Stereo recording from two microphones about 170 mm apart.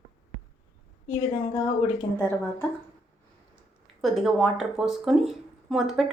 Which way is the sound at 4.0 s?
Centre (ahead or behind).